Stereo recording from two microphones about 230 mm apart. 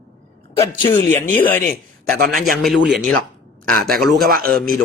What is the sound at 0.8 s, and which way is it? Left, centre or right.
Speech, left.